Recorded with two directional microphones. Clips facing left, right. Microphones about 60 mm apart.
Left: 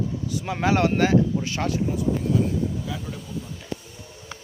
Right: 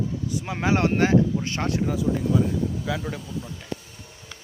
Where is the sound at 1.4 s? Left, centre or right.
Right.